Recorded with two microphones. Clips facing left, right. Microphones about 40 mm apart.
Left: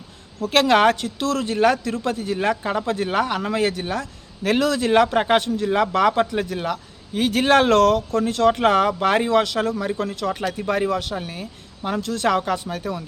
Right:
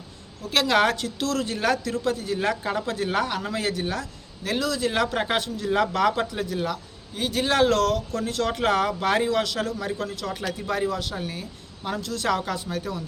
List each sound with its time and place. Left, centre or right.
0.4 s speech: left
0.7 s speech: left
1.7 s a man's voice: left
4.0 s a man's voice: left
4.9 s a man's voice: left
5.7 s a man's voice: left
6.6 s a sound: left
7.2 s speech: left
8.2 s a man's voice: left
11.1 s speech: left
12.0 s a man's voice: left